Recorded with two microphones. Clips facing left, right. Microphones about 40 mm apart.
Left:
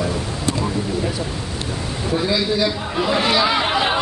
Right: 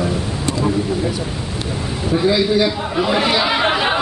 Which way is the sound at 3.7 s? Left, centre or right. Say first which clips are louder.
Right 1 dB; centre.